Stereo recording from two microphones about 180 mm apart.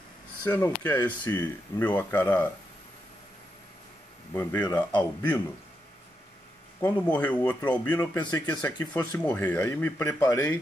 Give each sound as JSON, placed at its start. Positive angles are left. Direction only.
{"t": 0.5, "sound": "speech", "side_deg": 10}
{"t": 4.3, "sound": "speech", "side_deg": 10}
{"t": 6.8, "sound": "speech", "side_deg": 10}
{"t": 8.2, "sound": "speech", "side_deg": 20}
{"t": 9.2, "sound": "speech", "side_deg": 10}